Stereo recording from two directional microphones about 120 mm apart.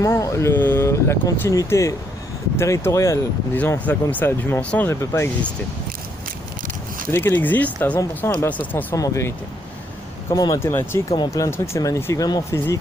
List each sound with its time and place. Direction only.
0.0 s speech: 25° left (ahead or behind)
4.9 s speech: 20° left (ahead or behind)
7.1 s speech: 20° left (ahead or behind)
10.7 s speech: 20° left (ahead or behind)
11.1 s speech: 30° left (ahead or behind)